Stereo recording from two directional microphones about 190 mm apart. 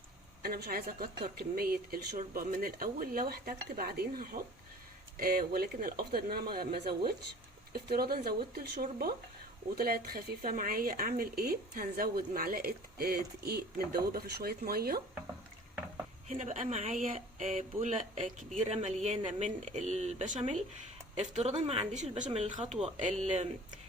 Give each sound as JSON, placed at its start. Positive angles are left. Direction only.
{"t": 0.4, "sound": "speech", "side_deg": -50}
{"t": 16.3, "sound": "speech", "side_deg": -40}